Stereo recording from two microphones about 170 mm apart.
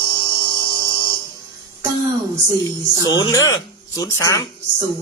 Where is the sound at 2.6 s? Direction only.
20° left (ahead or behind).